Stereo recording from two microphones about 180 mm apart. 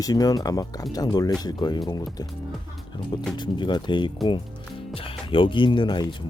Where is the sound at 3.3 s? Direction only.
25° left (ahead or behind).